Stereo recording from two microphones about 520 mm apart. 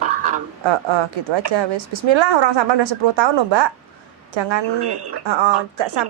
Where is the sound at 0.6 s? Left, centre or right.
Right.